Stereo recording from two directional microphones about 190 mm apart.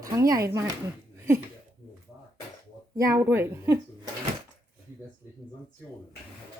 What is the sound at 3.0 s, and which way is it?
Speech, 15° right (ahead or behind).